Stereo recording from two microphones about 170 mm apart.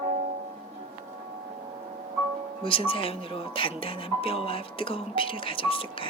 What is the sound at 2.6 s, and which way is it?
Speech, 30° left (ahead or behind).